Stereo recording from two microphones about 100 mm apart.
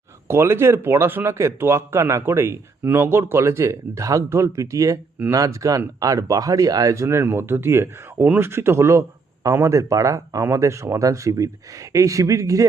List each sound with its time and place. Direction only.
0.3 s speech: 25° right (ahead or behind)